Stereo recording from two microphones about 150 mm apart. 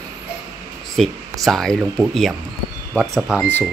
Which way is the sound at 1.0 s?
Centre (ahead or behind).